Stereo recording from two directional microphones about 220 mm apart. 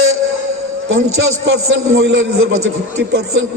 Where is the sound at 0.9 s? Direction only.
65° right (ahead or behind).